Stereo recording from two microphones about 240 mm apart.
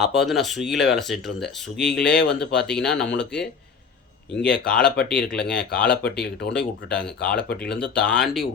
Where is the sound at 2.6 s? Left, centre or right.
Centre.